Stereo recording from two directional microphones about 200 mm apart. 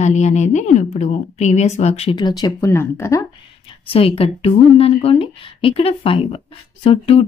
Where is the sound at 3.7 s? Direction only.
30° left (ahead or behind).